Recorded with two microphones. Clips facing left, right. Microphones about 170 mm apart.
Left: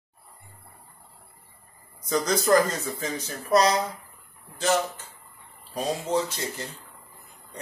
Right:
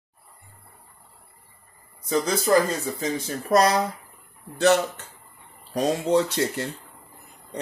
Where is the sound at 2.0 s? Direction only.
5° right (ahead or behind).